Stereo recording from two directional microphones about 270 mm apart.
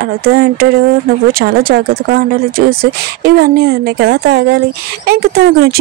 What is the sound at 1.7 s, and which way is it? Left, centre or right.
Speech, right.